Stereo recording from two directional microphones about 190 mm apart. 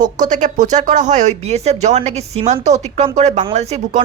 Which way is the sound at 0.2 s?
40° right (ahead or behind).